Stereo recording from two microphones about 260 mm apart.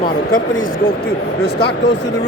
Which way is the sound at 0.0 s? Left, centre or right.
Left.